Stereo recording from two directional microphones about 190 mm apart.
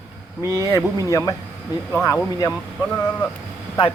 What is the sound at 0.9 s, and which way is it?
Speech, 15° left (ahead or behind).